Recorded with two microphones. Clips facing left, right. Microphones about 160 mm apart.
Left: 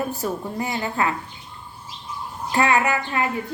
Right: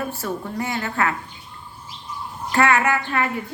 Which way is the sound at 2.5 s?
15° left (ahead or behind).